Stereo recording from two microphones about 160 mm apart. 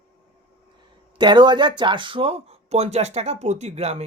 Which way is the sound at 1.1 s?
30° right (ahead or behind).